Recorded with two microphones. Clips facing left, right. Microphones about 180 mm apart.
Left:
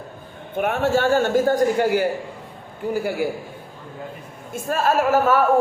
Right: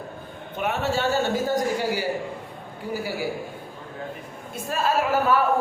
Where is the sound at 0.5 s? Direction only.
50° left (ahead or behind).